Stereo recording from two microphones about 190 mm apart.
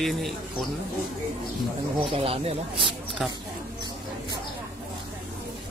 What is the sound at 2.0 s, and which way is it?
Speech, 30° right (ahead or behind).